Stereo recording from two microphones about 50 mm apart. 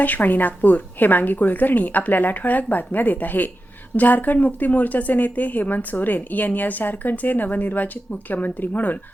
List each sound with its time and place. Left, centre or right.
0.0 s speech: left